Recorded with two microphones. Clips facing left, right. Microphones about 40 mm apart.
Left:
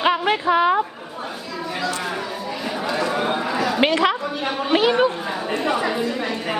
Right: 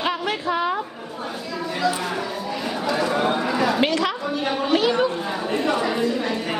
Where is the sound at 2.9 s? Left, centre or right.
Centre.